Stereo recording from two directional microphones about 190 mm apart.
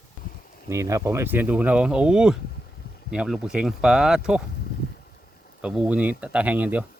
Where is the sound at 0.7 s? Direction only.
15° right (ahead or behind).